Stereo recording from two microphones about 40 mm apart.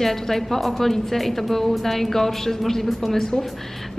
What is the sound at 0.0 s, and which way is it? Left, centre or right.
A woman's voice, centre.